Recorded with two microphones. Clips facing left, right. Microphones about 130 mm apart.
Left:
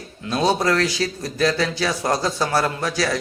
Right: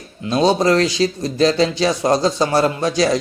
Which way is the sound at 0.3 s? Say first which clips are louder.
Right 5 dB; 20° right (ahead or behind).